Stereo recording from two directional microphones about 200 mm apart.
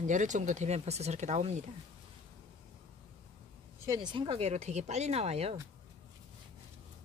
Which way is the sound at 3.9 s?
20° right (ahead or behind).